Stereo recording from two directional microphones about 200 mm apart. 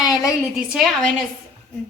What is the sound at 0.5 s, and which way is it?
Speech, centre (ahead or behind).